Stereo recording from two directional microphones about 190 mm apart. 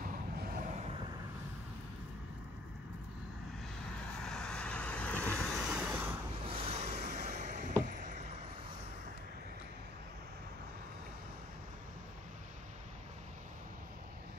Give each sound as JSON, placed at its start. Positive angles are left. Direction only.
{"t": 4.2, "sound": "vehicle", "side_deg": 5}
{"t": 5.7, "sound": "vehicle", "side_deg": -10}
{"t": 6.4, "sound": "a sound", "side_deg": -30}
{"t": 7.8, "sound": "vehicle", "side_deg": -45}